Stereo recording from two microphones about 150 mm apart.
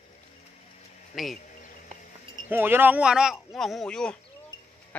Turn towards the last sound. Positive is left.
turn(degrees=5)  # may be behind; listen again after turning